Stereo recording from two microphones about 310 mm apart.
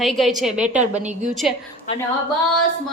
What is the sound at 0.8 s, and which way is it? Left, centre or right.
Speech, right.